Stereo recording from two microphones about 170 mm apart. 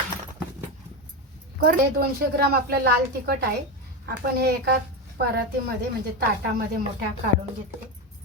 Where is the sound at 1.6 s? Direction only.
65° right (ahead or behind).